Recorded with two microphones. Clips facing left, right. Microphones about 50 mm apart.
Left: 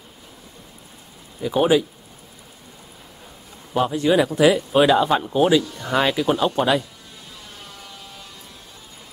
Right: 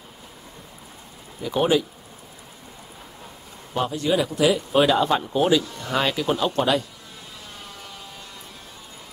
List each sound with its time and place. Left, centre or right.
1.4 s speech: centre
3.9 s speech: left
4.4 s speech: centre